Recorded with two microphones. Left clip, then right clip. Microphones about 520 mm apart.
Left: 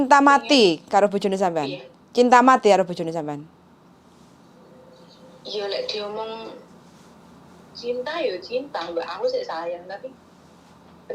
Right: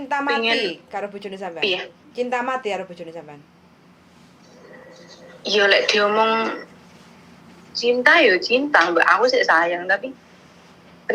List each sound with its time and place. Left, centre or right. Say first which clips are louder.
0.1 s a woman's voice: left 5 dB; left
5.4 s a woman's voice: right 11 dB; right
7.7 s a woman's voice: right 12 dB; right